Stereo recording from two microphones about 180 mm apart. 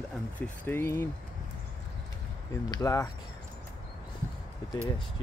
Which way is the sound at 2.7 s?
20° left (ahead or behind).